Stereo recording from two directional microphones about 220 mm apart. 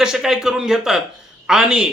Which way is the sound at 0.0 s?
Centre (ahead or behind).